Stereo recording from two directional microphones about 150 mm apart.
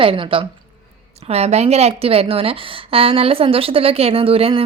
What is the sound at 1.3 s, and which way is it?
A woman's voice, 45° right (ahead or behind).